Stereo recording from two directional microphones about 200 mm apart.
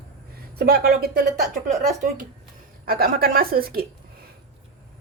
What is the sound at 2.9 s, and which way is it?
Speech, 50° right (ahead or behind).